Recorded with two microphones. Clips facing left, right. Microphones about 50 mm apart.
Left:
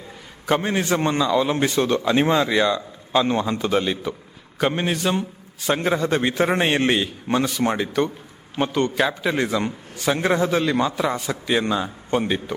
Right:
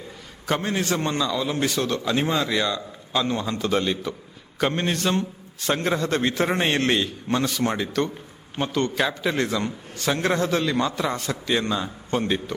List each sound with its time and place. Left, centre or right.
0.6 s a man's voice: left
3.7 s a man's voice: centre
9.0 s a man's voice: centre